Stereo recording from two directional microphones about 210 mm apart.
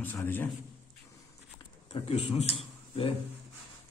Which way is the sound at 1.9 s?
30° left (ahead or behind).